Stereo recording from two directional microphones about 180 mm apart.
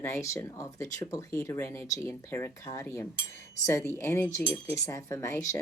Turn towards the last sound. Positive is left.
turn(degrees=15)  # may be behind; listen again after turning